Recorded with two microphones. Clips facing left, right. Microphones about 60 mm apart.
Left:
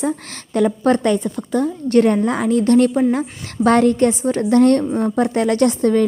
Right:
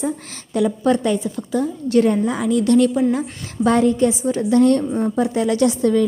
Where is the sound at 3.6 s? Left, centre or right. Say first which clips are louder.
Left 2 dB; left.